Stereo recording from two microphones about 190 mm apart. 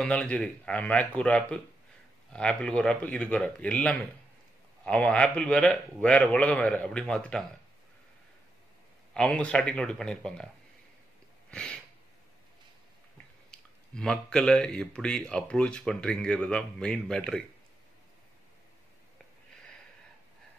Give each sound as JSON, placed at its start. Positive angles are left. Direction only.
{"t": 0.0, "sound": "a man's voice", "side_deg": 5}
{"t": 9.1, "sound": "speech", "side_deg": 5}
{"t": 11.5, "sound": "a sound", "side_deg": 5}
{"t": 13.5, "sound": "speech", "side_deg": 5}